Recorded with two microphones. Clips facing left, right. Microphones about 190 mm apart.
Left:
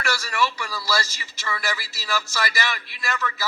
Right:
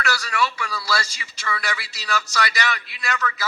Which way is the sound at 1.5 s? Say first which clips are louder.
Right 1 dB; centre (ahead or behind).